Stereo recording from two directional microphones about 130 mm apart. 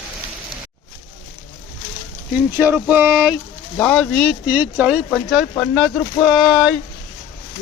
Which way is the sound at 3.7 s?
10° left (ahead or behind).